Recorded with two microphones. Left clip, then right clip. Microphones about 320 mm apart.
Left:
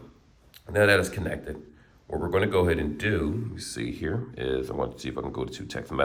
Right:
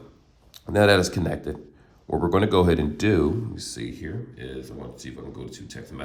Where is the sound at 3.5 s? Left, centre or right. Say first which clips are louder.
Left 1 dB; centre.